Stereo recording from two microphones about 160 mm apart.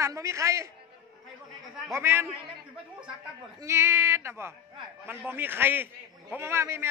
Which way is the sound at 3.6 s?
15° right (ahead or behind).